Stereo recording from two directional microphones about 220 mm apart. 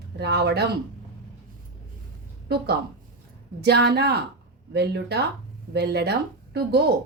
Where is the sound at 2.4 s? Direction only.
50° right (ahead or behind).